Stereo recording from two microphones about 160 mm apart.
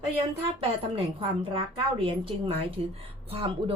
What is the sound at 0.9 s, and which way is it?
A woman's voice, 35° right (ahead or behind).